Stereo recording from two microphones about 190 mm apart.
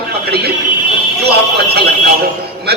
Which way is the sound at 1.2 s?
60° right (ahead or behind).